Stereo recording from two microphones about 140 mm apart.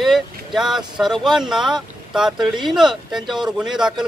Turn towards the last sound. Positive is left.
turn(degrees=-5)  # may be behind; listen again after turning